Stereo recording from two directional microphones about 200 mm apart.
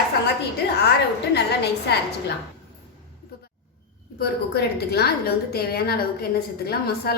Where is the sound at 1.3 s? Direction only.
55° left (ahead or behind).